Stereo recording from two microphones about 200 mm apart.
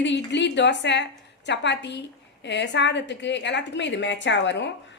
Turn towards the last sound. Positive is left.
turn(degrees=65)  # may be behind; listen again after turning